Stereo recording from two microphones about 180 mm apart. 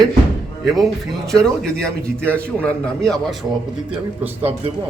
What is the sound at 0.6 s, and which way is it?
A man's voice, centre (ahead or behind).